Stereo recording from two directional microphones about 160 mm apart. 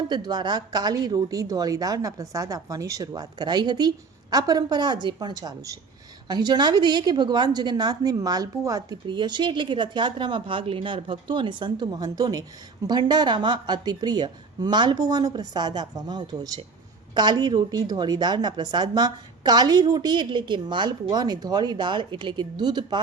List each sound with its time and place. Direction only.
0.1 s a woman's voice: 25° right (ahead or behind)